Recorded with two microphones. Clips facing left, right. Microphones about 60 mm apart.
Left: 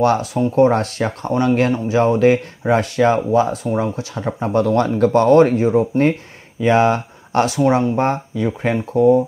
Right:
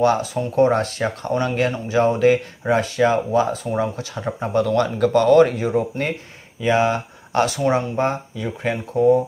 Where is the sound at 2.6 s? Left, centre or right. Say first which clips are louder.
Left 3 dB; left.